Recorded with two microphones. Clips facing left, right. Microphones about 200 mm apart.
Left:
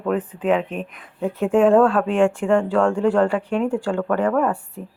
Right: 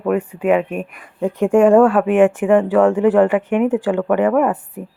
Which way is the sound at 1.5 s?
Centre (ahead or behind).